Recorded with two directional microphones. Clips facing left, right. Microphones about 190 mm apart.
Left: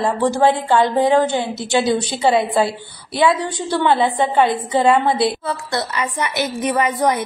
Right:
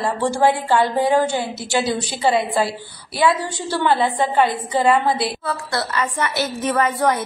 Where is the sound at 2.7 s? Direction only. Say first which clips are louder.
Left 2 dB; 25° left (ahead or behind).